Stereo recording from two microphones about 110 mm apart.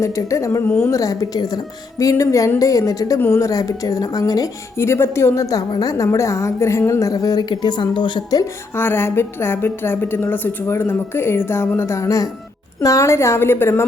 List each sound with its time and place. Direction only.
0.0 s a woman's voice: 30° left (ahead or behind)
8.7 s a woman's voice: 20° left (ahead or behind)